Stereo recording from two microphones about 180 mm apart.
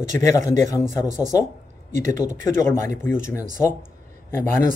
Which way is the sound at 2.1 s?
15° left (ahead or behind).